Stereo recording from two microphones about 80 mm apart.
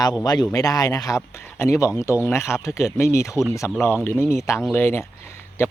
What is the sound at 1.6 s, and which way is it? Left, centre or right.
Speech, left.